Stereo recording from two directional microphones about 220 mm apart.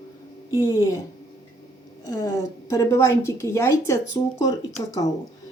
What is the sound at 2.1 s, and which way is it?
Speech, 15° left (ahead or behind).